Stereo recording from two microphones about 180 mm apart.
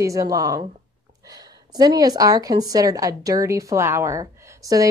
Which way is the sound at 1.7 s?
20° right (ahead or behind).